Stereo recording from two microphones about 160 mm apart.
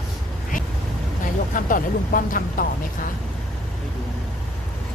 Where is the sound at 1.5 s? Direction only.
60° left (ahead or behind).